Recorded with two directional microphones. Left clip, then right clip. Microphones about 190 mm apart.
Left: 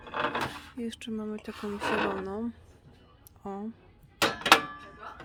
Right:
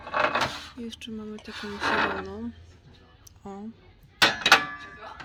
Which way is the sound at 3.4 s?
15° left (ahead or behind).